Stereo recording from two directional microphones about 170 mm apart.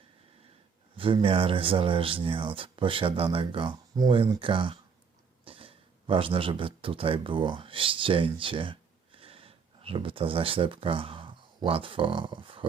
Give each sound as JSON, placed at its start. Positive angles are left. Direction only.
{"t": 0.9, "sound": "speech", "side_deg": -30}